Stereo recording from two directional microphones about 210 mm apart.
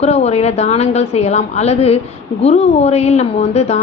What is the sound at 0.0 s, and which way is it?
A woman's voice, 30° left (ahead or behind).